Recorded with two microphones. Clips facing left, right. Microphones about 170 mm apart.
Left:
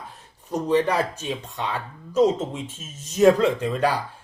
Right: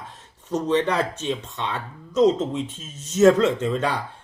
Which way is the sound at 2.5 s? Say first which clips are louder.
Right 5 dB; 30° right (ahead or behind).